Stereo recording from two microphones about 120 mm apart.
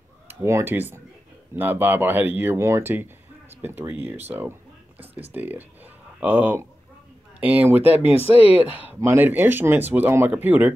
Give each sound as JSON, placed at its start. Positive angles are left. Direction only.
{"t": 0.3, "sound": "speech", "side_deg": -25}
{"t": 4.3, "sound": "a sound", "side_deg": -15}
{"t": 5.3, "sound": "speech", "side_deg": -15}
{"t": 8.1, "sound": "speech", "side_deg": 55}
{"t": 8.5, "sound": "speech", "side_deg": -15}